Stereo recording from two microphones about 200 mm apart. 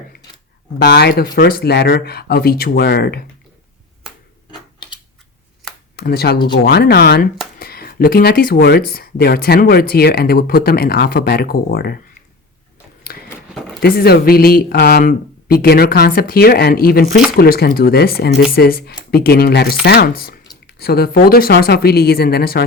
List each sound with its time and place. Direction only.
0.9 s speech: 55° left (ahead or behind)
6.0 s speech: 50° left (ahead or behind)
13.1 s a sound: 45° left (ahead or behind)
13.8 s speech: 50° left (ahead or behind)